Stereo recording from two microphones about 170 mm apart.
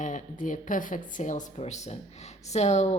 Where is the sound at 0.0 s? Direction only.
50° left (ahead or behind).